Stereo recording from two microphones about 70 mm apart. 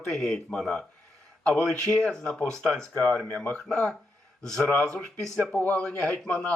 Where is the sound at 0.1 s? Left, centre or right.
Centre.